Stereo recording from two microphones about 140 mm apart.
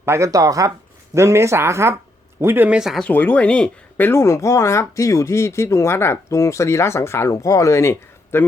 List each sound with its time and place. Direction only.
0.0 s speech: 20° right (ahead or behind); by 3.0 s 5° right (ahead or behind)
3.0 s speech: 15° left (ahead or behind)